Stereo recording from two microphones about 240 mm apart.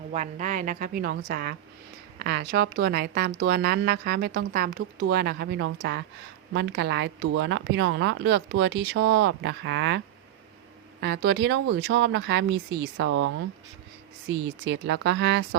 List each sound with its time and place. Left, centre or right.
0.1 s speech: right
11.0 s speech: right
13.1 s speech: right
14.3 s speech: right